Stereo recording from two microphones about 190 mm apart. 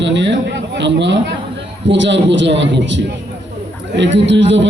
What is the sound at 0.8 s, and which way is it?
A man's voice, 70° right (ahead or behind).